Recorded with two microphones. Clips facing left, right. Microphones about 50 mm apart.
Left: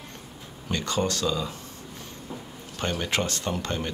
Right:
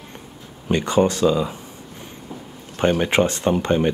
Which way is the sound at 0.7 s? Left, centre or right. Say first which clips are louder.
Right 9 dB; right.